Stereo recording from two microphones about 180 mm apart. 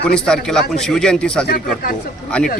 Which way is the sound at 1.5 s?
55° left (ahead or behind).